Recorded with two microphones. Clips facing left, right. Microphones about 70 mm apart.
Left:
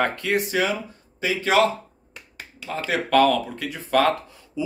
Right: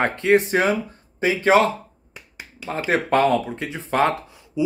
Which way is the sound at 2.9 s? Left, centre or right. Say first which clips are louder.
Even; right.